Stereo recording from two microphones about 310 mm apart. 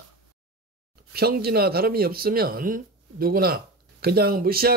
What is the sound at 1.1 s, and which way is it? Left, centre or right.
Speech, right.